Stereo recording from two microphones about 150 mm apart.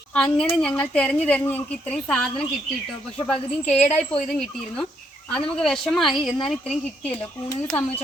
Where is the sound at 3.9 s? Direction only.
45° left (ahead or behind).